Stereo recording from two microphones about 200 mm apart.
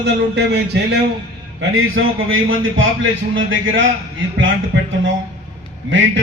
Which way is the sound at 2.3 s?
80° right.